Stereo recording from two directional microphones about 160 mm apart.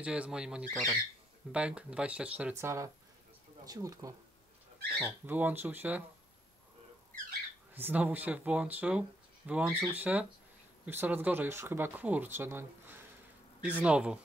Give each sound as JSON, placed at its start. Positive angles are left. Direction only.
{"t": 0.0, "sound": "speech", "side_deg": -5}
{"t": 7.7, "sound": "speech", "side_deg": -10}